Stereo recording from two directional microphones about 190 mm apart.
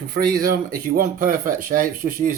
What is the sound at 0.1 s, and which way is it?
Speech, 50° right (ahead or behind).